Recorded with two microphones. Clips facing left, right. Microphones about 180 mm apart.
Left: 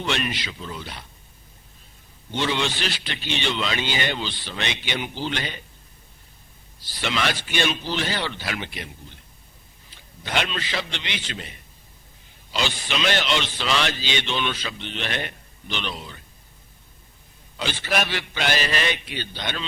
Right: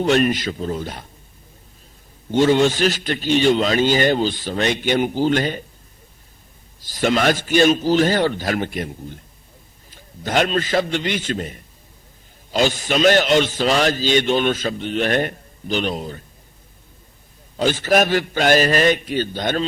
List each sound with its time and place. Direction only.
0.0 s a man's voice: 45° right (ahead or behind)
2.3 s a man's voice: 45° right (ahead or behind)
6.7 s a man's voice: 45° right (ahead or behind)
17.6 s a man's voice: 45° right (ahead or behind)